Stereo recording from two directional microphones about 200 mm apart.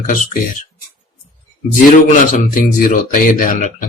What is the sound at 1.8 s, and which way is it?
Speech, 40° left (ahead or behind).